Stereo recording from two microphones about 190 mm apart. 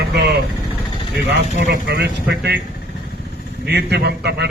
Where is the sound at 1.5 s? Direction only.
55° right (ahead or behind).